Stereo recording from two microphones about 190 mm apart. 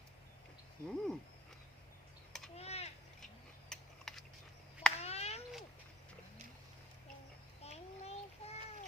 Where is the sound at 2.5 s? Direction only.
35° left (ahead or behind).